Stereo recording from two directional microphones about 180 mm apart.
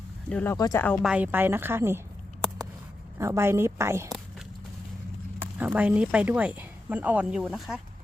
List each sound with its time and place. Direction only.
0.3 s speech: 10° left (ahead or behind)
0.5 s speech: 20° left (ahead or behind)
1.0 s a woman's voice: 10° right (ahead or behind)
3.2 s a woman's voice: 15° right (ahead or behind)
5.5 s a woman's voice: 10° right (ahead or behind)